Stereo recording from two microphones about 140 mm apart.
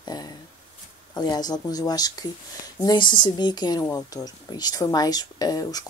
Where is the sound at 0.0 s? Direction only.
30° left (ahead or behind).